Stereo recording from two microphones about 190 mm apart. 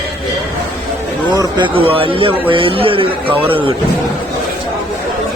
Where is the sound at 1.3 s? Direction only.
25° right (ahead or behind).